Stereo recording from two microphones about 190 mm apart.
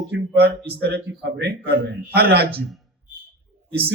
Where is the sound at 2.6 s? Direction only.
Centre (ahead or behind).